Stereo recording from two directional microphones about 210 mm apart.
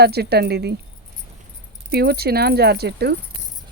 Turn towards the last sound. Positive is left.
turn(degrees=-50)  # may be behind; listen again after turning